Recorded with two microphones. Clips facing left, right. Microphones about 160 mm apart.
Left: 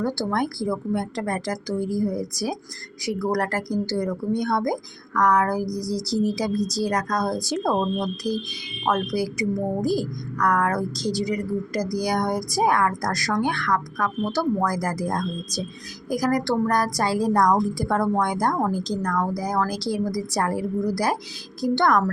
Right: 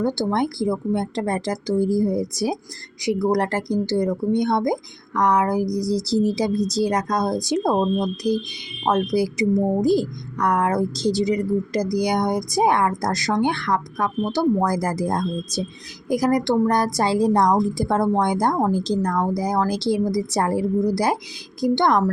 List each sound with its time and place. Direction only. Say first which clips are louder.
0.0 s a woman's voice: right 3 dB; 20° right (ahead or behind)